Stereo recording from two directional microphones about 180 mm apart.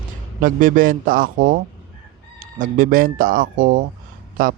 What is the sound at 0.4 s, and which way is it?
A man's voice, 50° right (ahead or behind).